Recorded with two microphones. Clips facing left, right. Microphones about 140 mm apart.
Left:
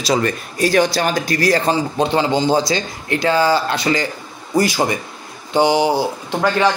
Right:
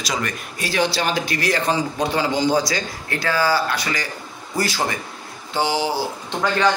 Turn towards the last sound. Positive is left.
turn(degrees=20)  # may be behind; listen again after turning